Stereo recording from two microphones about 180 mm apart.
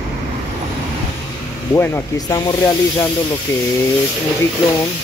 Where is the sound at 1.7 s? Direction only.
20° left (ahead or behind).